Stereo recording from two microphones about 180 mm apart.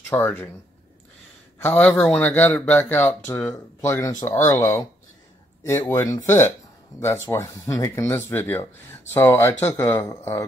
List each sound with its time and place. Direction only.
0.1 s speech: 10° left (ahead or behind)
1.8 s speech: 5° left (ahead or behind)